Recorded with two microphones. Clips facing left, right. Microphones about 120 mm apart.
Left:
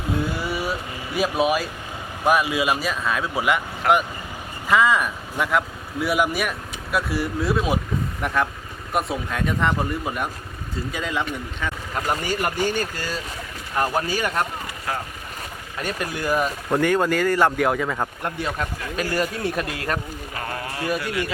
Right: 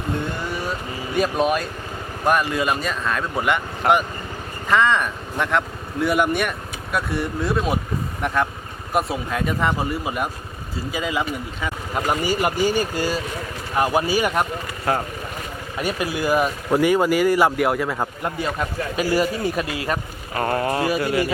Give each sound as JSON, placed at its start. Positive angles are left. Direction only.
{"t": 0.1, "sound": "vehicle", "side_deg": 5}
{"t": 2.2, "sound": "speech", "side_deg": 5}
{"t": 15.8, "sound": "speech", "side_deg": -5}
{"t": 20.3, "sound": "a man's voice", "side_deg": -45}